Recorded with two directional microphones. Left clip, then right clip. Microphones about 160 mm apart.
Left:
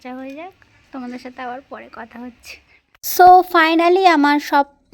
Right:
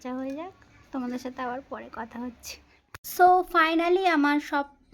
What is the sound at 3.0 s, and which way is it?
Speech, 45° left (ahead or behind).